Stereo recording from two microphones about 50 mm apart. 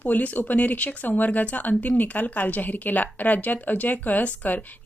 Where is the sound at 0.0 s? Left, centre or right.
Left.